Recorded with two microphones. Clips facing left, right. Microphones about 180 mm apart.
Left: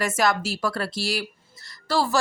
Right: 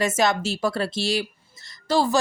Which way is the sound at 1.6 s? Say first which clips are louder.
Right 3 dB; 20° right (ahead or behind).